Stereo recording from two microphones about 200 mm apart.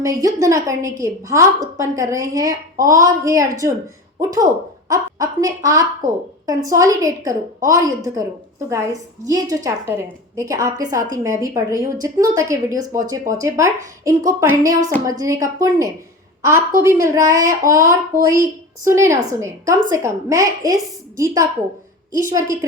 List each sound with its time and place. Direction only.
0.0 s a woman's voice: 15° right (ahead or behind)
4.9 s a woman's voice: 15° right (ahead or behind)
6.0 s a woman's voice: 40° right (ahead or behind)
6.4 s a woman's voice: 15° right (ahead or behind)
22.3 s a woman's voice: 15° right (ahead or behind)